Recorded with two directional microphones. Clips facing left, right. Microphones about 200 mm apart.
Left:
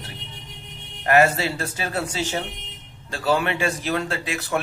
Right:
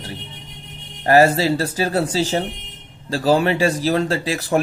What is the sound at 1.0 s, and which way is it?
A man's voice, 35° right (ahead or behind).